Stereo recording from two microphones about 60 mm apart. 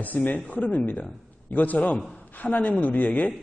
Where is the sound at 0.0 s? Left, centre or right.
Left.